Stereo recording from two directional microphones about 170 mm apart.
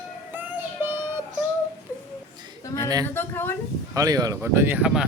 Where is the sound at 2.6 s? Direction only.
20° left (ahead or behind).